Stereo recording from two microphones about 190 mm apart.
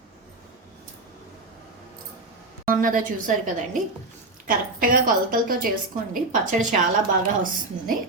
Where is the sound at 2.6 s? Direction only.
45° right (ahead or behind).